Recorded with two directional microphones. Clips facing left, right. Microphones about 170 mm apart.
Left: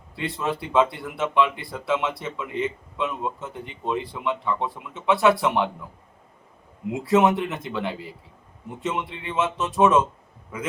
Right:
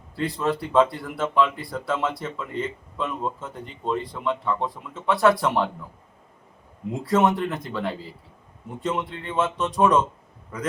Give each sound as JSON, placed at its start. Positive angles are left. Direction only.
{"t": 0.2, "sound": "speech", "side_deg": 0}
{"t": 7.0, "sound": "speech", "side_deg": 0}